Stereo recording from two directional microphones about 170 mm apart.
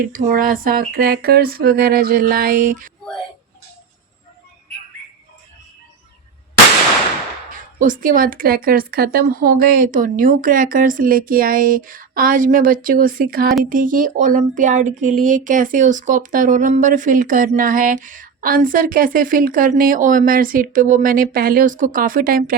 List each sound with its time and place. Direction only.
0.0 s speech: 55° right (ahead or behind)
7.8 s speech: 55° right (ahead or behind)